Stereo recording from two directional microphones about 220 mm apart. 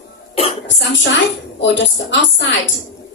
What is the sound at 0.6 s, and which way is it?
A woman's voice, 55° left (ahead or behind).